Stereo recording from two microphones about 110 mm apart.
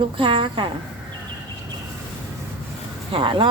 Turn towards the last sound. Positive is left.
turn(degrees=-50)  # may be behind; listen again after turning